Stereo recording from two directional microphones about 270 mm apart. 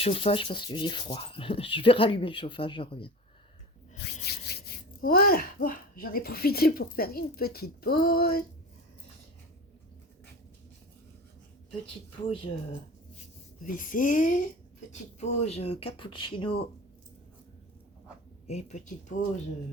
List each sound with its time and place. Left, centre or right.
0.0 s speech: left
3.9 s speech: left
12.2 s speech: left
13.7 s speech: left
18.4 s speech: left